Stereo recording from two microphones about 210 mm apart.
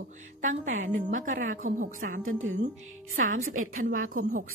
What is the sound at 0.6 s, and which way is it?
Speech, 65° right (ahead or behind).